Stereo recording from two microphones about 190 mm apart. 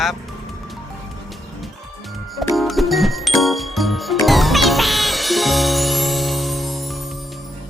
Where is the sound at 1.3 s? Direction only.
Centre (ahead or behind).